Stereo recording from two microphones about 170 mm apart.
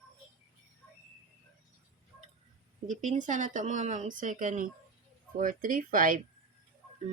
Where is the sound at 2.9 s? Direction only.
45° right (ahead or behind).